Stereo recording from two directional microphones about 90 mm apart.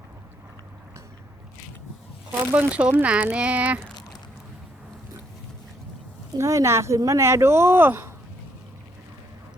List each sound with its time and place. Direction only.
2.5 s speech: 15° right (ahead or behind)
6.3 s speech: 30° right (ahead or behind)